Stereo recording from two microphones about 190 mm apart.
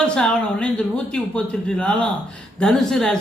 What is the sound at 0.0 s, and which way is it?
Speech, 5° left (ahead or behind).